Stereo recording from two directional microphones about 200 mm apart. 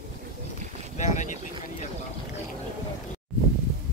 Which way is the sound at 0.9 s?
35° left (ahead or behind).